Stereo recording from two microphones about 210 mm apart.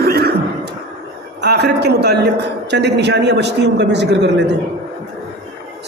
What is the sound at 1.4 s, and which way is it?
A woman's voice, 55° right (ahead or behind).